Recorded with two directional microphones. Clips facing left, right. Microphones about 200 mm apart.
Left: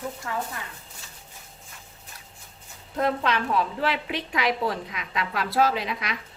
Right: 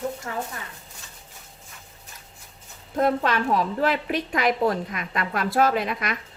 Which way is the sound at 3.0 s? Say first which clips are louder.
Right 3 dB; 50° right (ahead or behind).